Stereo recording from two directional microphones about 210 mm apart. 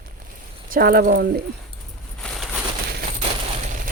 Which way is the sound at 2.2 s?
5° left (ahead or behind).